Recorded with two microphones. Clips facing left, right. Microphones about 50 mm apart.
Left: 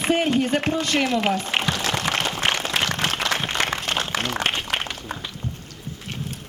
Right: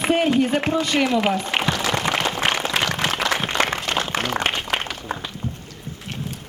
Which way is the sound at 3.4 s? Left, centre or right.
Right.